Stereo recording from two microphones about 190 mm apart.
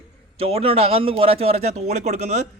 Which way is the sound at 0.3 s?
30° right (ahead or behind).